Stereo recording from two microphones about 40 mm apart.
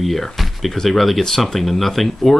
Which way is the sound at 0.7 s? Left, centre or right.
Centre.